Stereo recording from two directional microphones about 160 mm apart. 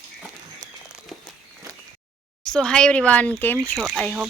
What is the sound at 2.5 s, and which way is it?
Speech, 5° left (ahead or behind).